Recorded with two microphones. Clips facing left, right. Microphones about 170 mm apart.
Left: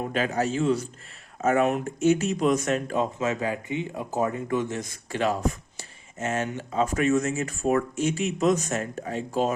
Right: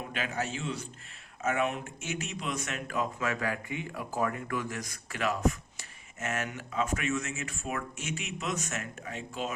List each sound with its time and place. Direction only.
0.0 s speech: 40° left (ahead or behind)